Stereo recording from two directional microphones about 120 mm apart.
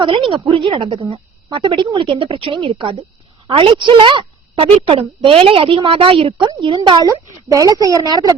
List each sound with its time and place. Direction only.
0.0 s a woman's voice: 45° right (ahead or behind)
7.1 s speech: 25° right (ahead or behind)